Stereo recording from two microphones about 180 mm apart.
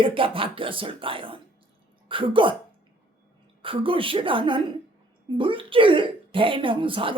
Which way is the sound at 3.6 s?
30° right (ahead or behind).